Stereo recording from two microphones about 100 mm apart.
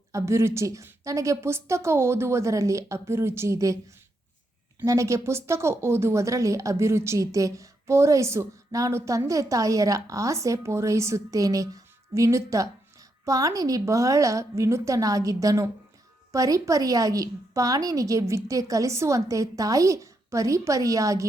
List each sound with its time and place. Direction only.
0.1 s a woman's voice: 30° right (ahead or behind)
4.9 s speech: 30° right (ahead or behind)